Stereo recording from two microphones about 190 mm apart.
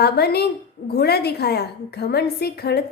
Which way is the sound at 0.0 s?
55° left (ahead or behind).